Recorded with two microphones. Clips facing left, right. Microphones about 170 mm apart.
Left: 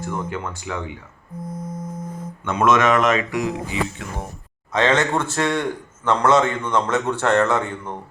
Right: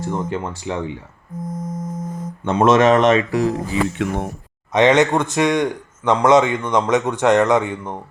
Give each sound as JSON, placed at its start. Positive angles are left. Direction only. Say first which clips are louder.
{"t": 0.0, "sound": "speech", "louder": "right 4 dB", "side_deg": -25}
{"t": 1.4, "sound": "a sound", "louder": "right 4 dB", "side_deg": -45}
{"t": 3.9, "sound": "speech", "louder": "right 10 dB", "side_deg": -75}
{"t": 4.7, "sound": "speech", "louder": "right 5 dB", "side_deg": -20}